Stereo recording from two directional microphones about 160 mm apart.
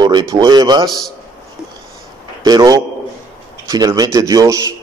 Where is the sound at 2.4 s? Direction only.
25° right (ahead or behind).